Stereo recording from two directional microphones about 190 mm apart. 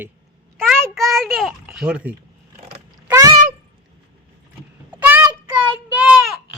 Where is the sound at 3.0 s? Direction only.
15° right (ahead or behind).